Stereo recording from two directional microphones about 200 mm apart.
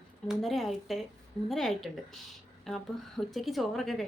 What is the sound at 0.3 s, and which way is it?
A woman's voice, centre (ahead or behind).